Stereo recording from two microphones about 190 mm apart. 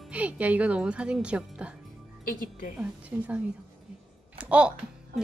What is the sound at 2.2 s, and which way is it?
Speech, 45° left (ahead or behind).